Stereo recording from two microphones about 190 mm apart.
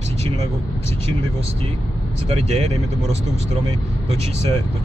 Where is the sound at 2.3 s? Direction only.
35° right (ahead or behind).